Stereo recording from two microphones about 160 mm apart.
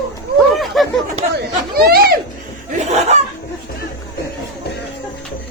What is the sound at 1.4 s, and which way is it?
Chatter, 70° right (ahead or behind).